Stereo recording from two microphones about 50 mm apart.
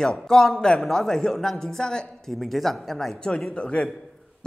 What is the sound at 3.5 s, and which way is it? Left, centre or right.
Speech, centre.